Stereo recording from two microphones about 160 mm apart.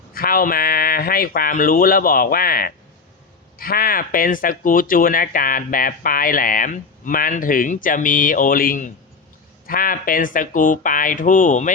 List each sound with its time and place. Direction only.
0.1 s speech: 65° left (ahead or behind)